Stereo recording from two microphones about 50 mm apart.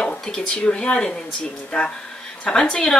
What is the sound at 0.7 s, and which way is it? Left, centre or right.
Speech, centre.